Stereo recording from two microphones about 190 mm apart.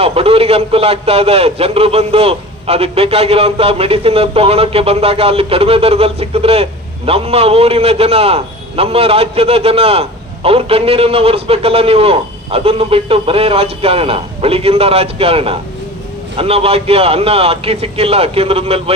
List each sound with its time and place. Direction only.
0.0 s speech: 30° right (ahead or behind)